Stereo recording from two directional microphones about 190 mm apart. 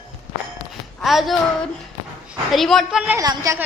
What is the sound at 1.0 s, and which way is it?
A woman's voice, centre (ahead or behind).